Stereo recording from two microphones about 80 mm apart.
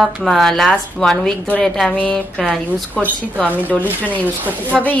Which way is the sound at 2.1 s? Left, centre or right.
Centre.